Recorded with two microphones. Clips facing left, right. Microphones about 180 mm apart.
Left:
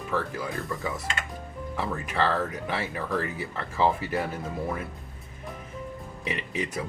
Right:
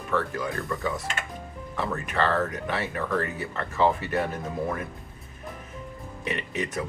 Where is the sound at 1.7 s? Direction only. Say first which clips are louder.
Right 2 dB; 10° left (ahead or behind).